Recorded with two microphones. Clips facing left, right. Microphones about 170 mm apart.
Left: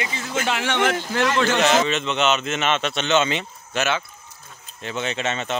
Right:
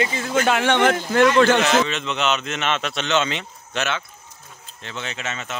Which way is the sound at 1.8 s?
Centre (ahead or behind).